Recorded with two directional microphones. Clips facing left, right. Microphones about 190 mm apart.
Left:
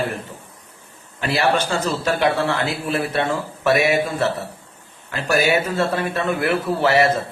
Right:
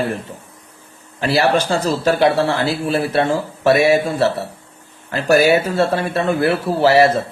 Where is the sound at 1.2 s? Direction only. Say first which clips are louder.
Right 4 dB; 35° right (ahead or behind).